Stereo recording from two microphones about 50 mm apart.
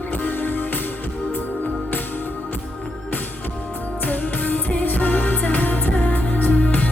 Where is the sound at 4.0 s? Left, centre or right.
Left.